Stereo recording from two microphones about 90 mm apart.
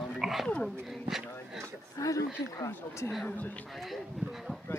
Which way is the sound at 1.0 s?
5° right (ahead or behind).